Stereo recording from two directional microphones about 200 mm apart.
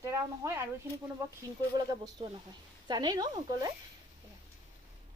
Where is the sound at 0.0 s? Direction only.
15° right (ahead or behind).